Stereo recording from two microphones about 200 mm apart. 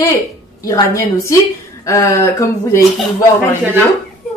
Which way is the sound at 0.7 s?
15° left (ahead or behind).